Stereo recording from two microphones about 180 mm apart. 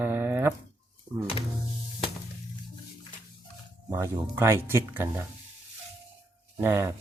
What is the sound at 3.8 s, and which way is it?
Speech, 15° right (ahead or behind).